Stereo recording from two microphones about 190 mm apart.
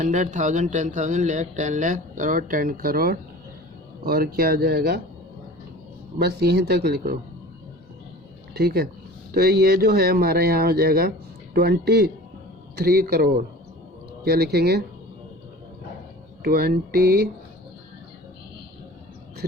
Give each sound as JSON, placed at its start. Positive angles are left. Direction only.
{"t": 0.0, "sound": "speech", "side_deg": -40}
{"t": 6.1, "sound": "speech", "side_deg": -60}
{"t": 8.5, "sound": "speech", "side_deg": -55}
{"t": 16.4, "sound": "speech", "side_deg": -55}